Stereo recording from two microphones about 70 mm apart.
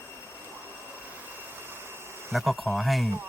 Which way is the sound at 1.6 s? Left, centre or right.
Right.